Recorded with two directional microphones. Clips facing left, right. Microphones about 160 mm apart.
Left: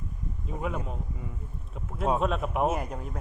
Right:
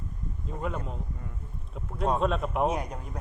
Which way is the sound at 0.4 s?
5° left (ahead or behind).